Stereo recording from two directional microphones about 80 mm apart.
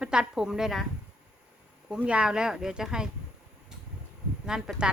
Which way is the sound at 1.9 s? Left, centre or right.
Centre.